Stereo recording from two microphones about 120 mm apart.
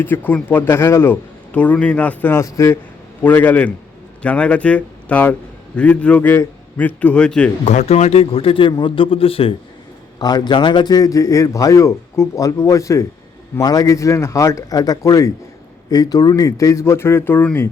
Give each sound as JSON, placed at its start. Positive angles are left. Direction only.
{"t": 0.0, "sound": "a man's voice", "side_deg": 15}
{"t": 7.6, "sound": "a man's voice", "side_deg": 75}
{"t": 10.2, "sound": "a man's voice", "side_deg": 35}